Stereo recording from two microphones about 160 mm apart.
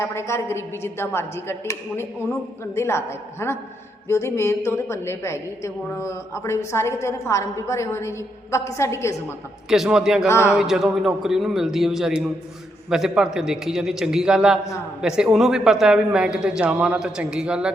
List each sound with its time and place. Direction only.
0.0 s a woman's voice: 15° left (ahead or behind)
9.6 s a man's voice: 5° right (ahead or behind)
10.2 s a woman's voice: 15° left (ahead or behind)
10.5 s a man's voice: centre (ahead or behind)